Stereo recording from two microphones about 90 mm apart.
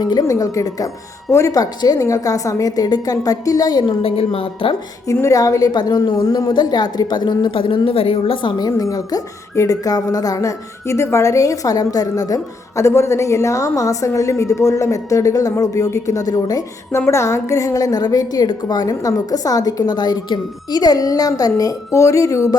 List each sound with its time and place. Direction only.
0.0 s a woman's voice: 50° left (ahead or behind)
3.8 s a woman's voice: 90° left
5.1 s a woman's voice: 35° left (ahead or behind)
17.1 s a woman's voice: 35° left (ahead or behind)